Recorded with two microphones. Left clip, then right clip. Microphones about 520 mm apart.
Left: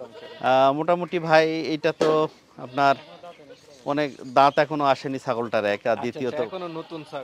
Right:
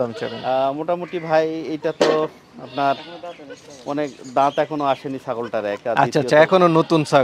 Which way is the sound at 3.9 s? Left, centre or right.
Left.